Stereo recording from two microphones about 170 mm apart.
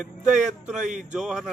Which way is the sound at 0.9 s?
45° right (ahead or behind).